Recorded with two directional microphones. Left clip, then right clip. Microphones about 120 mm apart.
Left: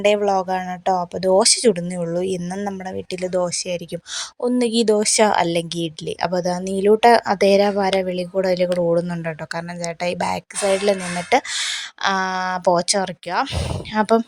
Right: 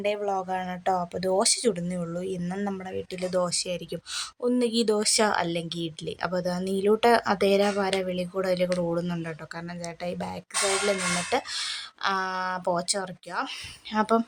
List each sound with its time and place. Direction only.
0.0 s speech: 60° left (ahead or behind); by 0.6 s 45° left (ahead or behind)
0.9 s a woman's voice: 30° left (ahead or behind)
3.2 s speech: 30° left (ahead or behind)
4.4 s a woman's voice: 50° left (ahead or behind)
9.8 s speech: 55° left (ahead or behind)
13.9 s a woman's voice: 40° left (ahead or behind)